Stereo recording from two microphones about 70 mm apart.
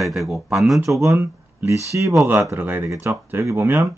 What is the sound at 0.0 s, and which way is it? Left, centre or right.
Speech, centre.